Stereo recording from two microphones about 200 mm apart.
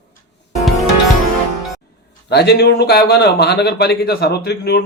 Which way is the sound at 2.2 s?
55° left (ahead or behind).